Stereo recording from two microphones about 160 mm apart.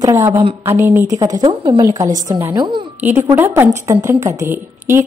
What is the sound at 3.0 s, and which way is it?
A woman's voice, 15° right (ahead or behind).